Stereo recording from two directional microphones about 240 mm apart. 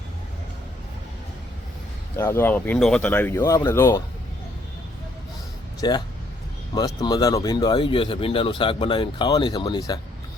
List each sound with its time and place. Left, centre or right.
2.1 s speech: centre
5.8 s speech: centre